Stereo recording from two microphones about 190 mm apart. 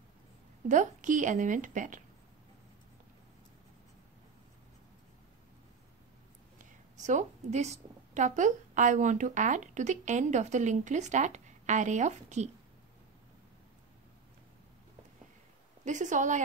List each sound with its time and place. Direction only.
0.7 s a woman's voice: 40° right (ahead or behind)
7.0 s a woman's voice: 40° right (ahead or behind)
15.8 s a woman's voice: 40° right (ahead or behind)